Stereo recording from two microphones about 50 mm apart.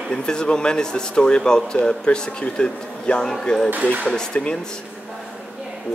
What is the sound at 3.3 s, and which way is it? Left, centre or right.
Speech, centre.